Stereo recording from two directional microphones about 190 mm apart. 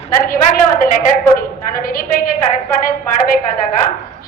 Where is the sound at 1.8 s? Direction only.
50° left (ahead or behind).